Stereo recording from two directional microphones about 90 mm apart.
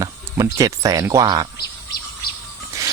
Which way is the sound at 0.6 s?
40° right (ahead or behind).